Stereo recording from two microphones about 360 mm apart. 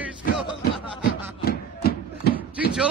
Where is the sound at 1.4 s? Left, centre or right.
Left.